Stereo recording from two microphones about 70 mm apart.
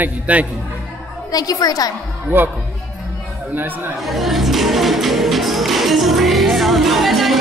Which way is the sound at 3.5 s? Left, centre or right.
Right.